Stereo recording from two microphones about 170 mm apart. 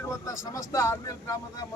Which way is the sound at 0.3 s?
20° left (ahead or behind).